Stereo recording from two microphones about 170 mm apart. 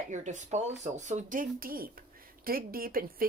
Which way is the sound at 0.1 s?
45° right (ahead or behind).